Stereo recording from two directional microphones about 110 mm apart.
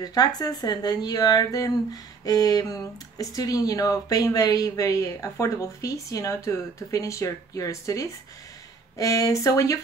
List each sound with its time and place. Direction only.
0.0 s speech: 35° left (ahead or behind)